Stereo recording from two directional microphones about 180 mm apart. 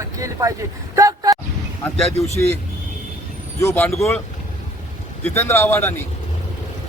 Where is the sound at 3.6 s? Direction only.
15° left (ahead or behind).